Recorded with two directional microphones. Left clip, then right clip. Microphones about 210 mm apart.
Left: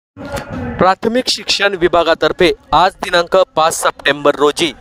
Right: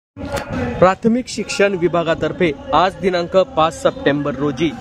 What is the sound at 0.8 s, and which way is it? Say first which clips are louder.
Speech: left 2 dB; 45° left (ahead or behind).